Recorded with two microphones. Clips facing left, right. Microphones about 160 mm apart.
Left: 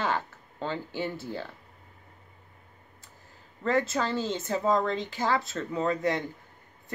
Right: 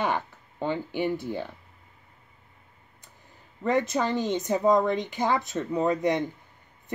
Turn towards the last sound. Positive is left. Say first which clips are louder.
# right 3 dB
turn(degrees=-20)  # may be behind; listen again after turning